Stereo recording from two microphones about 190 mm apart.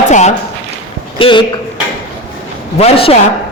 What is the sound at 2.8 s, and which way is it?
Speech, 30° left (ahead or behind).